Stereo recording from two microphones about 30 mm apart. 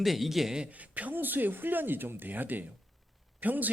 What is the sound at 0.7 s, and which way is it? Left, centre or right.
Speech, right.